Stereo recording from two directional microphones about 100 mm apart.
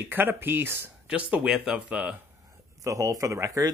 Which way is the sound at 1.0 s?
10° right (ahead or behind).